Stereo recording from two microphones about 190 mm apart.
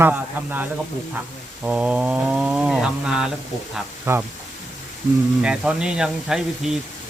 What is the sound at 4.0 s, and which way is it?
Speech, 15° right (ahead or behind).